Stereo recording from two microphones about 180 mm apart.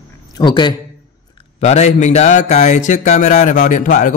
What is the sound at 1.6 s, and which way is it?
Speech, 40° left (ahead or behind).